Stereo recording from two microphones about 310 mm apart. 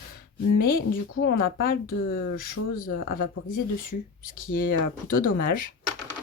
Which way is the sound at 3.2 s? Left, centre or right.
Left.